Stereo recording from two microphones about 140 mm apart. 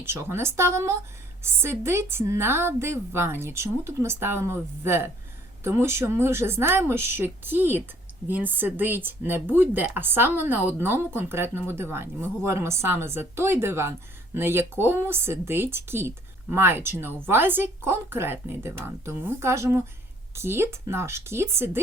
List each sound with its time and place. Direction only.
0.0 s a woman's voice: 15° right (ahead or behind)